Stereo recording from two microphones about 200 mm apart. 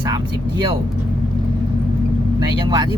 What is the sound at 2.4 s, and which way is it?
Speech, 20° right (ahead or behind).